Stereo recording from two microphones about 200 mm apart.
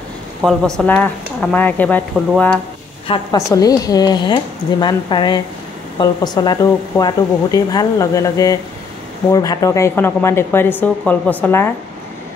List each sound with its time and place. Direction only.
0.4 s speech: centre (ahead or behind)